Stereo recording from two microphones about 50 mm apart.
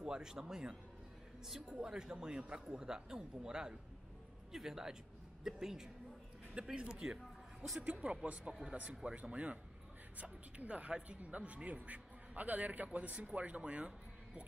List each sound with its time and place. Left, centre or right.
0.0 s a man's voice: centre
7.2 s a sound: centre
7.8 s a man's voice: right